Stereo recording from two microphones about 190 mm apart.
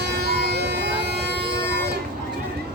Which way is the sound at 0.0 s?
60° right (ahead or behind).